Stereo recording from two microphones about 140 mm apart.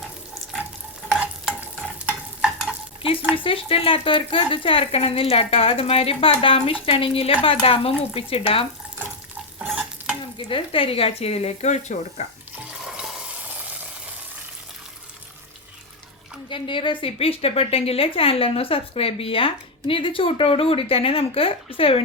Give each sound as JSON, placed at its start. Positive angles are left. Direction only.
{"t": 1.1, "sound": "stir", "side_deg": -5}
{"t": 3.3, "sound": "a woman's voice", "side_deg": 40}
{"t": 9.6, "sound": "stir", "side_deg": -5}
{"t": 10.3, "sound": "speech", "side_deg": 40}
{"t": 12.8, "sound": "frying", "side_deg": -5}
{"t": 16.5, "sound": "a woman's voice", "side_deg": 35}